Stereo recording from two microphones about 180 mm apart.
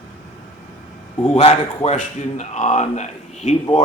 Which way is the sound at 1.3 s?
35° left (ahead or behind).